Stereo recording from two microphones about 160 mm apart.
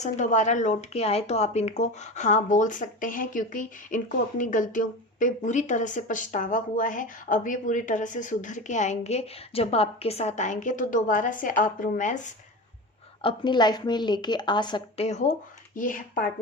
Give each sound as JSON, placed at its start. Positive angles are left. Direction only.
{"t": 0.0, "sound": "speech", "side_deg": 50}
{"t": 13.2, "sound": "a woman's voice", "side_deg": 30}
{"t": 15.0, "sound": "speech", "side_deg": 45}